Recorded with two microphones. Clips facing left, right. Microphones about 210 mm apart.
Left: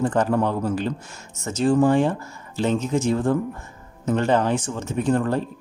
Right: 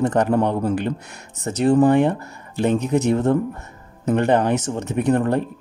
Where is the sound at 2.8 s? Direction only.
65° right (ahead or behind).